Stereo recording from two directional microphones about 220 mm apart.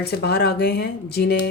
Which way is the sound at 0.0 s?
45° left (ahead or behind).